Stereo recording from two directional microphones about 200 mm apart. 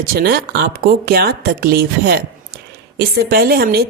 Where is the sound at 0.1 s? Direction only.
50° right (ahead or behind).